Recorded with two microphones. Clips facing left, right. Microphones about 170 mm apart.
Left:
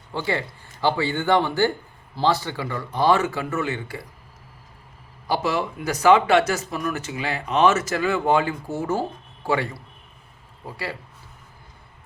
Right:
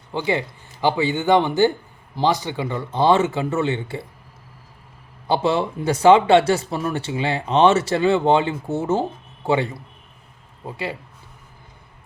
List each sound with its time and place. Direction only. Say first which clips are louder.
0.1 s a man's voice: right 3 dB; 20° right (ahead or behind)
5.3 s speech: right 4 dB; 25° right (ahead or behind)